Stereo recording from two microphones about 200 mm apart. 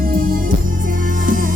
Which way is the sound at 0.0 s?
45° right (ahead or behind).